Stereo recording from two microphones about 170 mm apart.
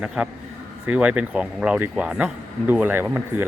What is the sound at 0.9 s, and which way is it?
Speech, 5° right (ahead or behind).